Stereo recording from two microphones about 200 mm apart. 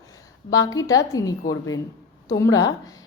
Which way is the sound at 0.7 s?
15° left (ahead or behind).